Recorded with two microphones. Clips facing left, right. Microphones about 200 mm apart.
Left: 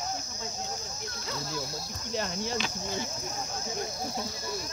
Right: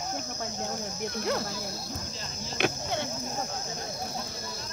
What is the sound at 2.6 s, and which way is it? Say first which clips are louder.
Speech: right 5 dB; 65° right (ahead or behind).